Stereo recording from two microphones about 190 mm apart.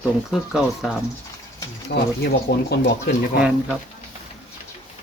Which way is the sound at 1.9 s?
65° left (ahead or behind).